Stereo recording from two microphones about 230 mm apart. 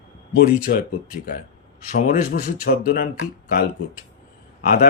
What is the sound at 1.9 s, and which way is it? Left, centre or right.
Speech, left.